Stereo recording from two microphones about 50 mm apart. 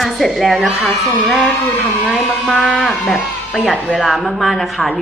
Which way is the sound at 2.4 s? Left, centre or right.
Centre.